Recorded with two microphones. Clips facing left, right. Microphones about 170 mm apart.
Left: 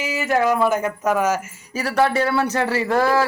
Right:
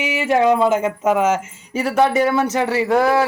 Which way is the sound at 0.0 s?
25° right (ahead or behind).